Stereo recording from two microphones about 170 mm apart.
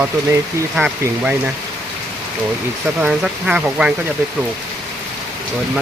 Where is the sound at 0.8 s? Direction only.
10° right (ahead or behind).